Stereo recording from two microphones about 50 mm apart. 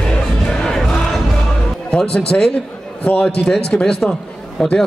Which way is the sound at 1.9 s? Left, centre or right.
Centre.